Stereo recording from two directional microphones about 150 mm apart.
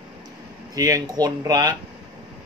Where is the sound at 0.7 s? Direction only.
20° right (ahead or behind).